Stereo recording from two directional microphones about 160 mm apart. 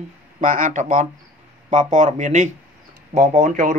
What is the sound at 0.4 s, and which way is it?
Speech, 55° right (ahead or behind).